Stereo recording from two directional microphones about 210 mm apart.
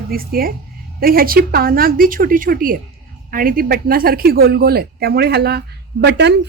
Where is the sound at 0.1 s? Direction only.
45° right (ahead or behind).